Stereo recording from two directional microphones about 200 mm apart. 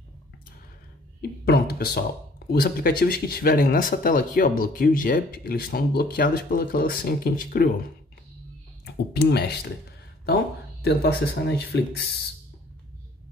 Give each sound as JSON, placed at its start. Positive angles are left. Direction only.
{"t": 1.4, "sound": "speech", "side_deg": 55}
{"t": 8.8, "sound": "speech", "side_deg": 55}